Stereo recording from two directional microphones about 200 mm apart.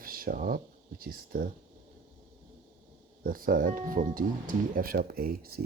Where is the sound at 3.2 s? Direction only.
45° right (ahead or behind).